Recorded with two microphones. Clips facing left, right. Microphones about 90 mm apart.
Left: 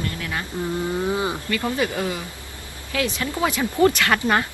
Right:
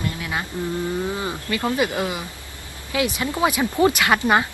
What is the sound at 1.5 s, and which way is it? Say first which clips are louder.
Speech: right 1 dB; 20° right (ahead or behind).